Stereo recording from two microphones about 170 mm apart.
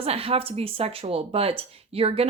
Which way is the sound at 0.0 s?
35° right (ahead or behind).